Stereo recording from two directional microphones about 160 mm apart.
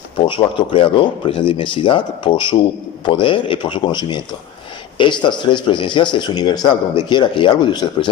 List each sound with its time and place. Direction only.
0.2 s speech: 30° left (ahead or behind)